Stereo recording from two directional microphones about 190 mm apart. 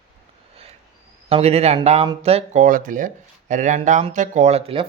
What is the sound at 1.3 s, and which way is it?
Speech, 30° right (ahead or behind).